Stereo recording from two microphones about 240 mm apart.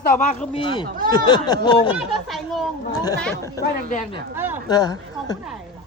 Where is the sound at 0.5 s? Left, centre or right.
Centre.